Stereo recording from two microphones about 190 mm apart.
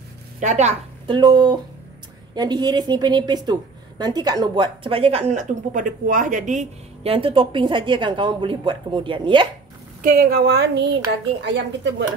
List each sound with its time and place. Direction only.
0.4 s a woman's voice: 40° right (ahead or behind)
1.0 s a woman's voice: 25° right (ahead or behind)
10.0 s a woman's voice: 50° right (ahead or behind); by 11.9 s 70° right (ahead or behind)